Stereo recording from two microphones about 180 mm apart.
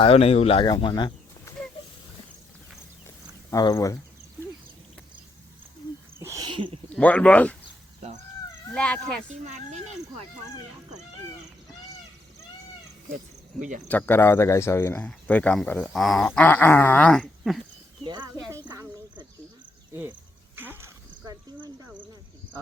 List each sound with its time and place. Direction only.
0.0 s speech: 35° left (ahead or behind)
3.5 s speech: 20° left (ahead or behind)
6.1 s a sound: 15° right (ahead or behind)
6.9 s speech: 10° left (ahead or behind)
8.7 s speech: 5° left (ahead or behind)
9.4 s speech: 40° right (ahead or behind)
13.6 s speech: 45° right (ahead or behind)
13.8 s speech: 10° left (ahead or behind)
18.0 s speech: 25° right (ahead or behind)
18.5 s snake: 20° right (ahead or behind)
19.9 s speech: 10° right (ahead or behind)
20.6 s snake: 10° right (ahead or behind)